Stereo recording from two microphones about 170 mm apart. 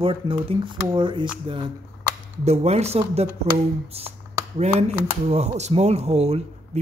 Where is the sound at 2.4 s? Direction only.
40° right (ahead or behind).